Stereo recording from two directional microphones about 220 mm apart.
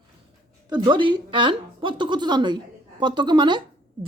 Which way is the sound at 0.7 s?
20° right (ahead or behind).